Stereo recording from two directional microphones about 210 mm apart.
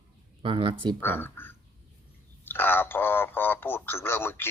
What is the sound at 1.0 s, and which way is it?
Speech, 10° left (ahead or behind).